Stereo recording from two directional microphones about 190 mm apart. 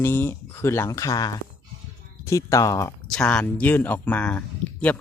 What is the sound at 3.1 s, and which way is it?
Speech, 5° left (ahead or behind).